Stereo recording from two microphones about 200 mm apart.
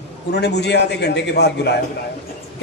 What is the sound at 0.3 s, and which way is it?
A man's voice, 55° left (ahead or behind).